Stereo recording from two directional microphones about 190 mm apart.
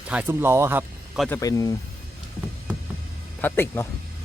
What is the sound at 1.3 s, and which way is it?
Speech, 20° left (ahead or behind).